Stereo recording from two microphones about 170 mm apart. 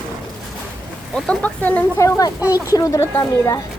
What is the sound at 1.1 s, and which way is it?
Speech, 5° left (ahead or behind).